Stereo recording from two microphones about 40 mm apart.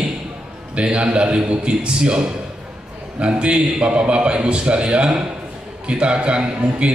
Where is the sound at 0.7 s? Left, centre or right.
Right.